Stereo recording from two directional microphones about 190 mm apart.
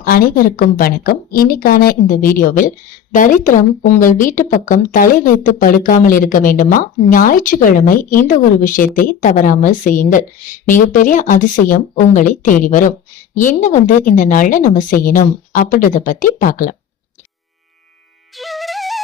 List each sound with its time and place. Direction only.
0.0 s speech: 50° left (ahead or behind)
18.3 s music: centre (ahead or behind)